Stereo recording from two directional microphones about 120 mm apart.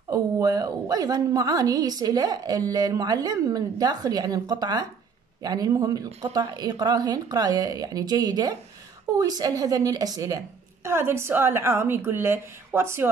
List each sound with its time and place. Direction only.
0.1 s a woman's voice: 30° right (ahead or behind)